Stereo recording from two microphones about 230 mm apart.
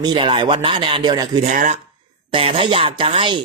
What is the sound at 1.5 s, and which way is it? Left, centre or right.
Speech, right.